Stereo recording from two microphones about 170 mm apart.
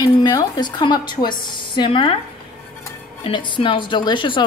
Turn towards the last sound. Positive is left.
turn(degrees=30)  # may be behind; listen again after turning